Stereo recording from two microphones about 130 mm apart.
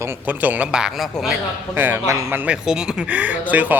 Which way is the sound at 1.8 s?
15° right (ahead or behind).